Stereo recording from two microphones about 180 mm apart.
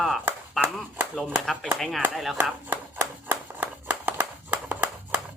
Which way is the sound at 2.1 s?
Centre (ahead or behind).